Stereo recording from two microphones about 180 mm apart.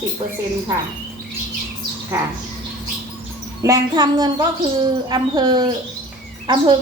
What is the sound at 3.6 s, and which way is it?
A woman's voice, 20° right (ahead or behind).